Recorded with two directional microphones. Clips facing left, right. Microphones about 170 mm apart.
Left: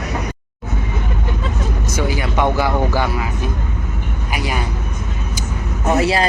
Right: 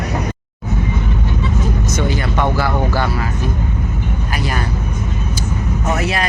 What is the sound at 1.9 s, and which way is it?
Speech, 10° left (ahead or behind).